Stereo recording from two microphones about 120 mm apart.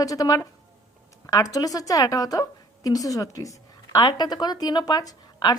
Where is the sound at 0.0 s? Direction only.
30° left (ahead or behind).